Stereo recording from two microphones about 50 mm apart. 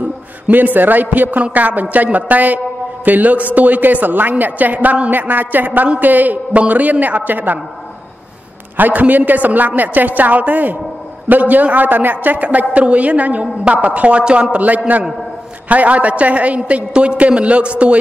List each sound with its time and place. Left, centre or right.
0.5 s a woman's voice: right
5.1 s a woman's voice: right
8.7 s a woman's voice: right